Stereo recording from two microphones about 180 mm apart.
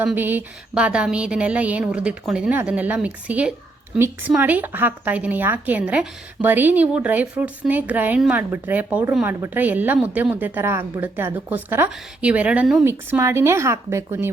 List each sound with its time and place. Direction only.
0.0 s a woman's voice: 10° right (ahead or behind)